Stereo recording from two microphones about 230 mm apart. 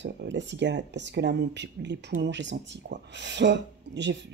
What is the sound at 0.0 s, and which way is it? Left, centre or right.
Speech, right.